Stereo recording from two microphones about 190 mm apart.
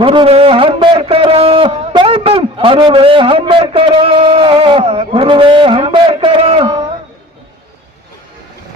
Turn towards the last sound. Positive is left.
turn(degrees=-30)  # may be behind; listen again after turning